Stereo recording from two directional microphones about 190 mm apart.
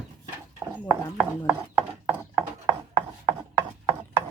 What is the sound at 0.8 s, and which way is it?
Ratchet, 10° right (ahead or behind).